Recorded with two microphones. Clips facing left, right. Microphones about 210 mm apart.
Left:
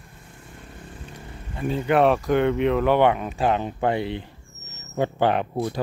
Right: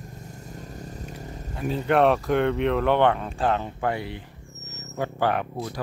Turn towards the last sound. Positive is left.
turn(degrees=25)  # may be behind; listen again after turning